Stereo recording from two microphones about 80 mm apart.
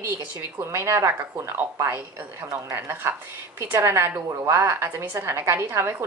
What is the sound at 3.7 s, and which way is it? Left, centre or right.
A woman's voice, right.